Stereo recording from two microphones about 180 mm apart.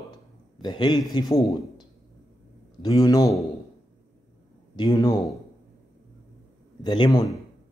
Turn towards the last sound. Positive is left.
turn(degrees=20)  # may be behind; listen again after turning